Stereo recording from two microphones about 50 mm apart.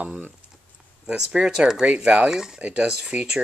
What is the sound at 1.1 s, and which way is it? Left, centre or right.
Speech, centre.